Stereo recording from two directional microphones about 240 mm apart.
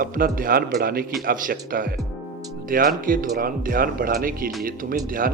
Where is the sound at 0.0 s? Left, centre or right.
Right.